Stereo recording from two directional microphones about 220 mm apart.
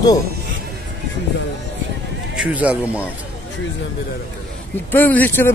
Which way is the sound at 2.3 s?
5° right (ahead or behind).